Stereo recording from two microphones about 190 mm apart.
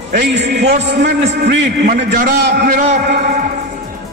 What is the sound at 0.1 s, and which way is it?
A man's voice, 60° right (ahead or behind).